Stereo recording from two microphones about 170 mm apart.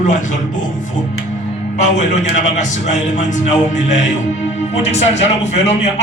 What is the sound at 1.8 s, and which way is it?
Speech, 45° left (ahead or behind).